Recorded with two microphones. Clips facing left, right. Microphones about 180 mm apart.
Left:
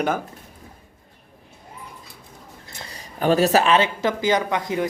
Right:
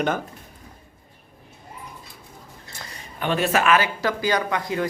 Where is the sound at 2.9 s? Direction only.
35° left (ahead or behind).